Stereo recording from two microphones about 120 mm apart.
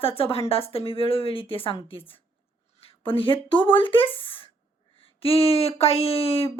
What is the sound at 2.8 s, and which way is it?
Speech, 50° left (ahead or behind).